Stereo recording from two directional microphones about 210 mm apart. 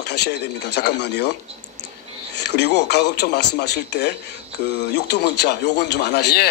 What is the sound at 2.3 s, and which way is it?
Speech, 55° left (ahead or behind).